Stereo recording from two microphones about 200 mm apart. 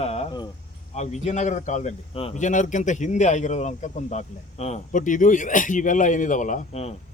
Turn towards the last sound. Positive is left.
turn(degrees=30)  # may be behind; listen again after turning